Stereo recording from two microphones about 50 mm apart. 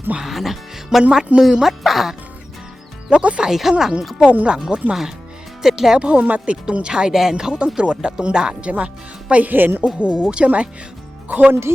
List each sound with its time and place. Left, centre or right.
0.2 s speech: centre
0.9 s speech: centre
3.1 s speech: right
3.5 s speech: centre
4.3 s speech: right
6.1 s speech: right
9.3 s speech: right
10.0 s speech: right